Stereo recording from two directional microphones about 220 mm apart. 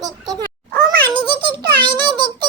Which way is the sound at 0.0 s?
15° right (ahead or behind).